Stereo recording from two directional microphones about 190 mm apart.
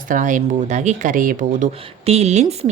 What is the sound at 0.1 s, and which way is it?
Speech, 40° right (ahead or behind).